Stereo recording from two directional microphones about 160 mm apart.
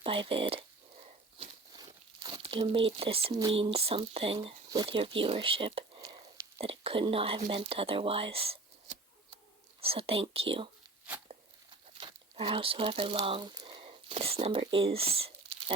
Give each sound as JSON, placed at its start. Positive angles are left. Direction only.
{"t": 0.0, "sound": "speech", "side_deg": -35}
{"t": 1.7, "sound": "crumpling", "side_deg": -25}
{"t": 3.5, "sound": "speech", "side_deg": -35}
{"t": 6.1, "sound": "a sound", "side_deg": -20}
{"t": 6.6, "sound": "speech", "side_deg": -35}
{"t": 7.5, "sound": "a sound", "side_deg": -35}
{"t": 9.8, "sound": "speech", "side_deg": -35}
{"t": 11.9, "sound": "speech", "side_deg": -35}
{"t": 13.5, "sound": "a sound", "side_deg": -25}